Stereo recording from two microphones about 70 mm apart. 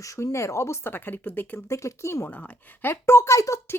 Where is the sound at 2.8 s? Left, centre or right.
Left.